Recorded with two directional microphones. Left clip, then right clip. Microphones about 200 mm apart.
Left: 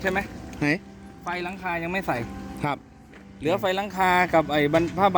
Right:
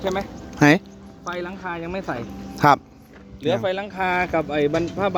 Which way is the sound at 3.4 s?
55° left (ahead or behind).